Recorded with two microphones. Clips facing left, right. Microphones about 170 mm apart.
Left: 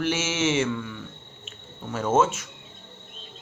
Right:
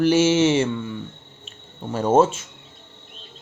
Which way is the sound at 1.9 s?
35° right (ahead or behind).